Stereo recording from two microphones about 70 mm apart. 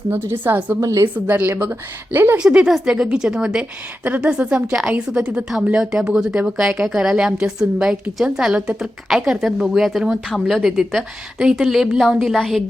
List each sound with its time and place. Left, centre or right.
0.1 s speech: right
0.8 s speech: right
1.0 s speech: right
2.4 s a woman's voice: centre